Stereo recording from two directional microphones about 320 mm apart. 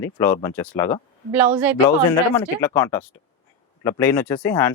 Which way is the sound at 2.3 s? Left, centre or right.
Centre.